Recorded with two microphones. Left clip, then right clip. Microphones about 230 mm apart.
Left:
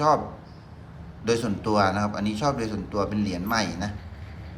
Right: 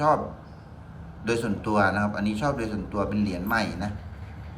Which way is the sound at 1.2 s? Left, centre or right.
Centre.